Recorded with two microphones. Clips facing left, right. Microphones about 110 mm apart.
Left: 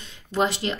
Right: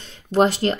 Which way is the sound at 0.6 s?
55° right (ahead or behind).